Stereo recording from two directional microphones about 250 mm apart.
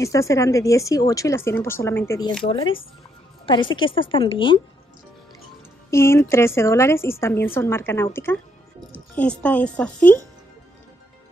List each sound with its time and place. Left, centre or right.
0.0 s a woman's voice: centre
5.9 s a woman's voice: centre